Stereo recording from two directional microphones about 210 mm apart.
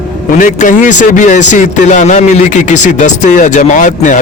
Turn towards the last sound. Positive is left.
turn(degrees=35)  # may be behind; listen again after turning